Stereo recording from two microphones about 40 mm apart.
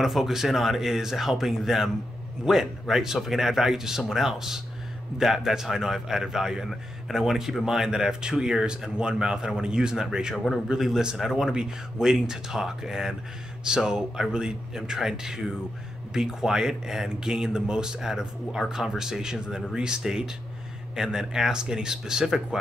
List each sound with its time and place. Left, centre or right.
0.0 s speech: centre